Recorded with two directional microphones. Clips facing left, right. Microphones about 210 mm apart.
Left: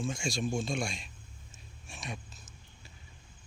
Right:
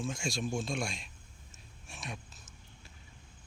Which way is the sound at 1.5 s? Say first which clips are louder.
Left 1 dB; centre (ahead or behind).